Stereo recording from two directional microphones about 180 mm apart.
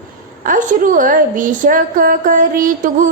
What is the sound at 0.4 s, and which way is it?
A woman's voice, 50° right (ahead or behind).